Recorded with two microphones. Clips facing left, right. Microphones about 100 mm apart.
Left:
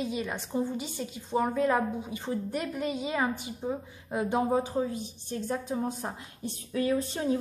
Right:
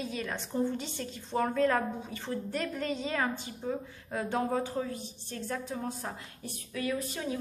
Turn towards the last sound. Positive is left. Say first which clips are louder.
# left 6 dB
turn(degrees=30)  # may be behind; listen again after turning